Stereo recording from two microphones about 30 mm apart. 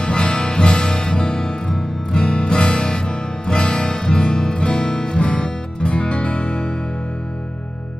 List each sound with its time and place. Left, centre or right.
0.0 s music: left
5.2 s music: left